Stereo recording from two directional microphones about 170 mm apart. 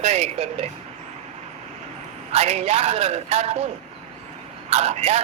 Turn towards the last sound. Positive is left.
turn(degrees=-40)  # may be behind; listen again after turning